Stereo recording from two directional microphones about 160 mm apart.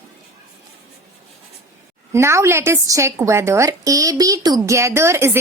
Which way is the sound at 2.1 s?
15° right (ahead or behind).